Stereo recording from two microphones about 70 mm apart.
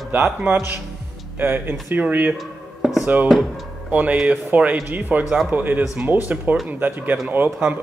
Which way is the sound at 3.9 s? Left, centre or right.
Right.